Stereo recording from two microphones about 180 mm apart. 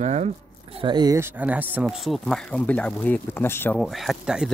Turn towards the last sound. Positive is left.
turn(degrees=-5)  # may be behind; listen again after turning